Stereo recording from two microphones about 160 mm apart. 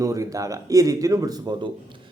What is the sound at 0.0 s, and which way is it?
A man's voice, 20° right (ahead or behind).